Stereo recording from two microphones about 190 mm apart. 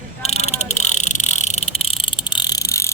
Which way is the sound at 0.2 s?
35° left (ahead or behind).